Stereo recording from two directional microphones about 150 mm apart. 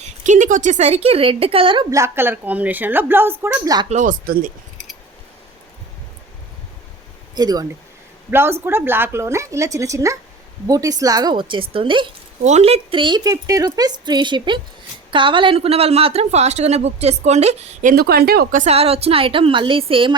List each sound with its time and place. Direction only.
0.3 s speech: 55° right (ahead or behind); by 1.9 s 35° right (ahead or behind)
1.9 s a woman's voice: 15° right (ahead or behind)
3.8 s speech: 55° right (ahead or behind)
7.3 s a woman's voice: 25° right (ahead or behind)
8.3 s a woman's voice: 15° right (ahead or behind); by 12.0 s 35° right (ahead or behind)
12.4 s a woman's voice: 50° right (ahead or behind)
17.9 s speech: 90° right
18.6 s speech: 40° right (ahead or behind)